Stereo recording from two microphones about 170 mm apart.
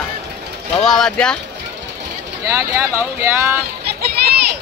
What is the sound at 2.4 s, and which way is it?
Speech, 15° right (ahead or behind).